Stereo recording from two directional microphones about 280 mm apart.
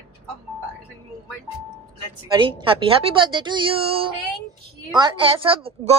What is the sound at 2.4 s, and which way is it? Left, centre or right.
A woman's voice, centre.